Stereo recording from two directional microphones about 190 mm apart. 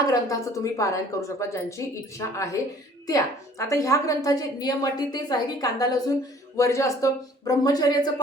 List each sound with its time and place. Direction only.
0.0 s a woman's voice: 15° left (ahead or behind)